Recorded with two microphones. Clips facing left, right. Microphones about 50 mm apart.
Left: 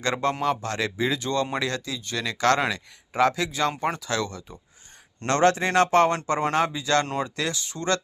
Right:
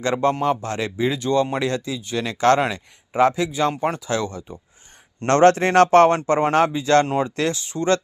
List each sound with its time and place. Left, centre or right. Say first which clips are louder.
0.0 s speech: right 4 dB; centre
5.3 s speech: right 6 dB; right
6.2 s a man's voice: right 6 dB; right
7.0 s speech: right 6 dB; centre
7.3 s a man's voice: right 6 dB; right